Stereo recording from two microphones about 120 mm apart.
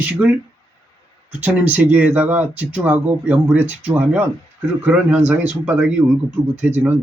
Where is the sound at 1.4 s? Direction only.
10° right (ahead or behind).